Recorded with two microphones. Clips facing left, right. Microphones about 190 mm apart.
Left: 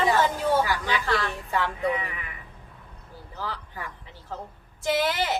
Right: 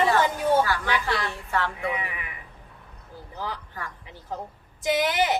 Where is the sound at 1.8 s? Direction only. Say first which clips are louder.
Left 3 dB; 15° right (ahead or behind).